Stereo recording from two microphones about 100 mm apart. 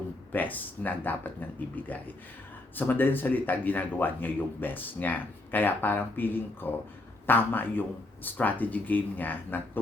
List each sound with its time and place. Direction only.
0.3 s speech: 15° left (ahead or behind)